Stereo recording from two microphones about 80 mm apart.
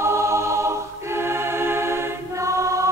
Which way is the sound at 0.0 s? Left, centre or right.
Right.